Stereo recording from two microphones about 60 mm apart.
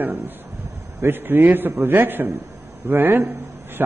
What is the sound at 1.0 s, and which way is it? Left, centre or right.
A man's voice, right.